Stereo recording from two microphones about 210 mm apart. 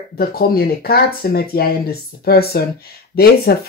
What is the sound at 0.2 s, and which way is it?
Speech, 45° left (ahead or behind).